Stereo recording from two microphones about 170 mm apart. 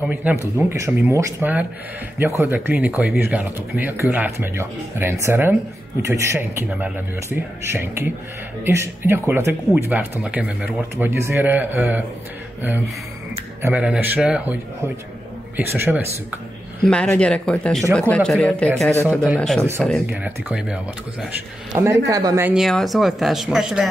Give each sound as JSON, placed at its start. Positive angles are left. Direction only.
{"t": 0.1, "sound": "speech", "side_deg": -10}
{"t": 13.6, "sound": "speech", "side_deg": -10}
{"t": 16.8, "sound": "speech", "side_deg": 0}
{"t": 21.7, "sound": "speech", "side_deg": -20}
{"t": 22.5, "sound": "speech", "side_deg": 0}